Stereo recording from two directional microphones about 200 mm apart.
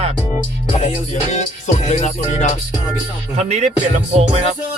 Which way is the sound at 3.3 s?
35° right (ahead or behind).